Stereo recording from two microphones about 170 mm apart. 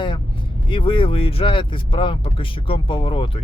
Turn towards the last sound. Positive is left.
turn(degrees=30)  # may be behind; listen again after turning